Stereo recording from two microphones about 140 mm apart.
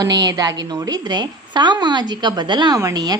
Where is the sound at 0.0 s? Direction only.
30° right (ahead or behind).